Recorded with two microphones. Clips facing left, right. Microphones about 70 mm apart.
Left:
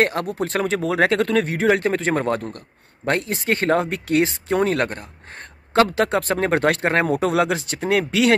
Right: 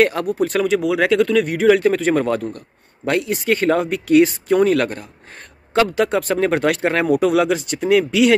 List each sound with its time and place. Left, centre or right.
0.0 s speech: left
3.1 s speech: left